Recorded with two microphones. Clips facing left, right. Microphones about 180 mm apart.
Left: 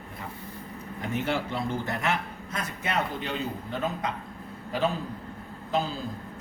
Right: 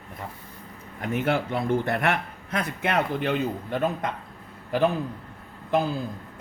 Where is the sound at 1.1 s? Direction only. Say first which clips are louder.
Right 4 dB; 55° right (ahead or behind).